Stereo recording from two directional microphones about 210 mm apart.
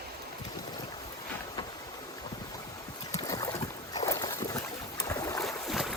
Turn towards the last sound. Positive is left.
turn(degrees=0)  # may be behind; listen again after turning